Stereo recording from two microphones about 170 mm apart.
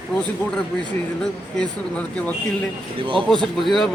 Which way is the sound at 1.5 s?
10° left (ahead or behind).